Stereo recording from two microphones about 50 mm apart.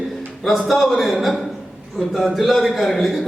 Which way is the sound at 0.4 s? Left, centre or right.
Centre.